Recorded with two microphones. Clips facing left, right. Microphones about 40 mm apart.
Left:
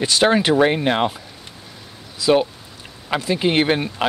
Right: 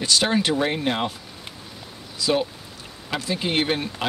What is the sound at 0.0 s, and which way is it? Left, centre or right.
Speech, left.